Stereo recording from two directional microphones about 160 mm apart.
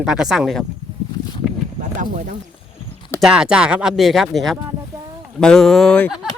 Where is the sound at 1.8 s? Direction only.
55° right (ahead or behind).